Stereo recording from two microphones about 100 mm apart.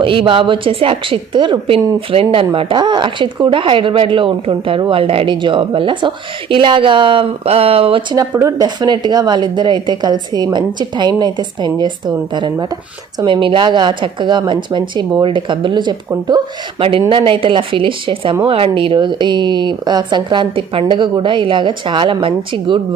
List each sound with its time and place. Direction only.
0.0 s speech: 60° right (ahead or behind)
8.4 s speech: 35° right (ahead or behind)
17.1 s speech: 55° right (ahead or behind)